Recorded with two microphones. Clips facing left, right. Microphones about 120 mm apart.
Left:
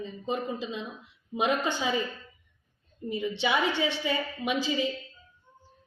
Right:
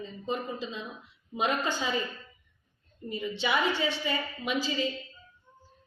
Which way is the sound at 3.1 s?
20° left (ahead or behind).